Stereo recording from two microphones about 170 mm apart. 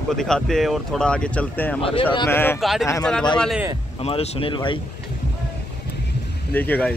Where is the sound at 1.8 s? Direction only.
35° left (ahead or behind).